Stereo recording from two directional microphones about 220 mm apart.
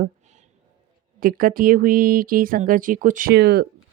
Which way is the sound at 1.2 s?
40° right (ahead or behind).